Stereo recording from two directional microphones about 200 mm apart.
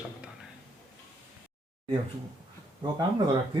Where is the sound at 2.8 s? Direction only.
20° right (ahead or behind).